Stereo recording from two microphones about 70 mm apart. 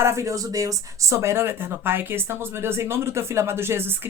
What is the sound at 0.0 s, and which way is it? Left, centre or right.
Speech, right.